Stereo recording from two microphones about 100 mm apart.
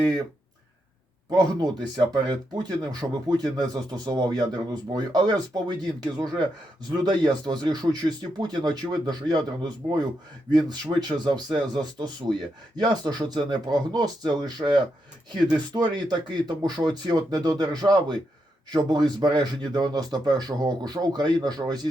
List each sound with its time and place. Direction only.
1.3 s speech: 45° right (ahead or behind)